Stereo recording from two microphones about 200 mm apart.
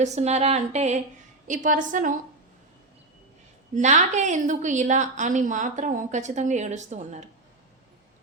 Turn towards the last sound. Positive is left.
turn(degrees=-35)  # may be behind; listen again after turning